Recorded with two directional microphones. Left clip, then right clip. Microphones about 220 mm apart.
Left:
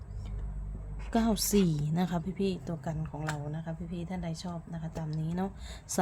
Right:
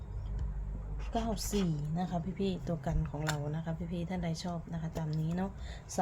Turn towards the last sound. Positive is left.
turn(degrees=15)  # may be behind; listen again after turning